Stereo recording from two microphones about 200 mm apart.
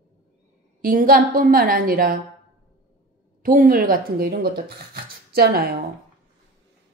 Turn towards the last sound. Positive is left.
turn(degrees=-50)  # may be behind; listen again after turning